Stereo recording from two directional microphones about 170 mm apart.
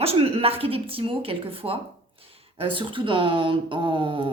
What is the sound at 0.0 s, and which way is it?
Speech, 35° right (ahead or behind).